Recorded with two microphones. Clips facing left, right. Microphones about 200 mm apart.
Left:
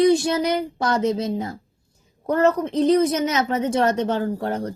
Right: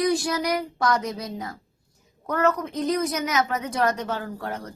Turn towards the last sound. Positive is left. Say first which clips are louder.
# left 8 dB
turn(degrees=30)  # may be behind; listen again after turning